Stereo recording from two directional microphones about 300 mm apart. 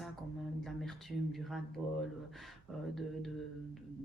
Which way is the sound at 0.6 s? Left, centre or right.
Centre.